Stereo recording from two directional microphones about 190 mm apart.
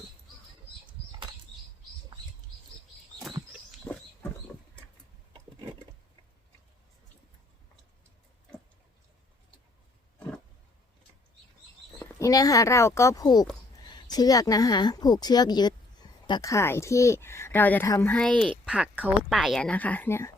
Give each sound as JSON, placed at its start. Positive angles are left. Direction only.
{"t": 2.1, "sound": "patter", "side_deg": -25}
{"t": 3.9, "sound": "a sound", "side_deg": 5}
{"t": 12.2, "sound": "a woman's voice", "side_deg": 20}